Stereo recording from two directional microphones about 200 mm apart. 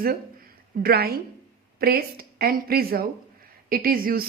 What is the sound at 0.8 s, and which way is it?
A woman's voice, 50° right (ahead or behind).